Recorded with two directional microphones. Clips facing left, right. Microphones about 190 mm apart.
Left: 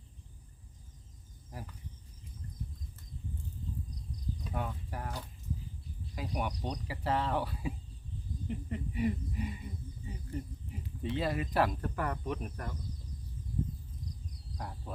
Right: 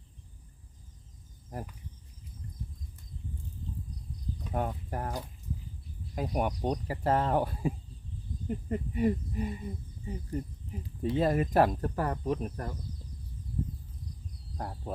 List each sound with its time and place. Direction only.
4.5 s speech: 45° right (ahead or behind)
11.0 s speech: 45° right (ahead or behind)
14.6 s speech: 40° right (ahead or behind)